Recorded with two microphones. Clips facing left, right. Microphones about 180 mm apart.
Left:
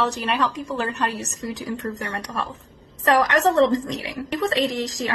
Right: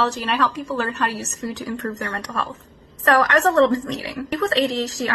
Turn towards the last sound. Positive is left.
turn(degrees=15)  # may be behind; listen again after turning